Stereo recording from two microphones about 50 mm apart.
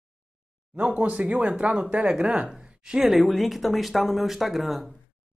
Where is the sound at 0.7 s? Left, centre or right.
Right.